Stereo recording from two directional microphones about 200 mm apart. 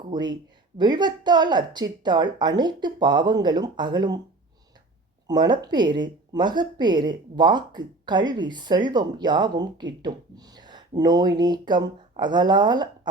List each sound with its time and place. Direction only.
0.1 s speech: 20° right (ahead or behind)
5.3 s speech: 20° right (ahead or behind)